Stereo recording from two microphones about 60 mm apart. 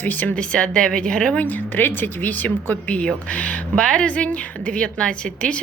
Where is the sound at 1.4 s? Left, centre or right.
Left.